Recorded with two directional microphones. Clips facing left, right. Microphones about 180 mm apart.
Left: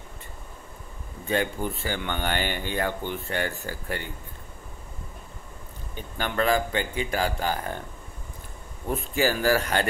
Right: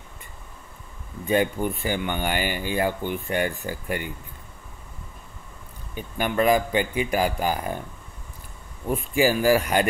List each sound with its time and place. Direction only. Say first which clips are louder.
1.2 s speech: right 4 dB; 15° right (ahead or behind)
5.9 s speech: right 4 dB; 10° right (ahead or behind)
8.9 s speech: right 4 dB; 10° right (ahead or behind)